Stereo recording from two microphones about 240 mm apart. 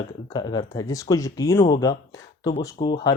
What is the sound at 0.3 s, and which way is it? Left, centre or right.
Speech, centre.